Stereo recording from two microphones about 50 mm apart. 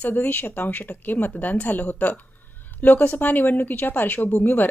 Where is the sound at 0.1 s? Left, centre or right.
Left.